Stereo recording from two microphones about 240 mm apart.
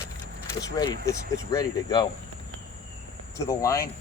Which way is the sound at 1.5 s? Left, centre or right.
Centre.